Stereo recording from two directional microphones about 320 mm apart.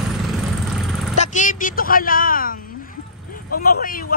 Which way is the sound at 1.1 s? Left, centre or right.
Left.